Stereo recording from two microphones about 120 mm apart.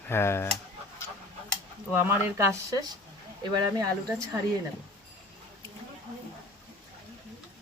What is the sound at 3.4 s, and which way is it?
Speech, 35° right (ahead or behind).